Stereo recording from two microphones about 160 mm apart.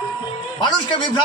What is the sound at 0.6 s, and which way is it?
Speech, 30° left (ahead or behind).